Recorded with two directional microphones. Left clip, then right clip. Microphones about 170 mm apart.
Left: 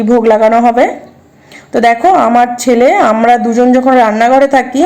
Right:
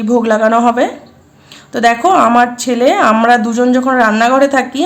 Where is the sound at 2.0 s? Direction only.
5° left (ahead or behind).